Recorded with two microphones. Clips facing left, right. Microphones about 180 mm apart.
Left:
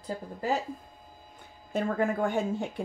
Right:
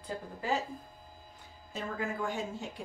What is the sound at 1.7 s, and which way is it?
Speech, 55° left (ahead or behind).